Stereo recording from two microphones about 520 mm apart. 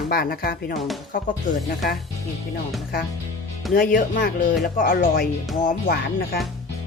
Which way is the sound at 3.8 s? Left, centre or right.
Centre.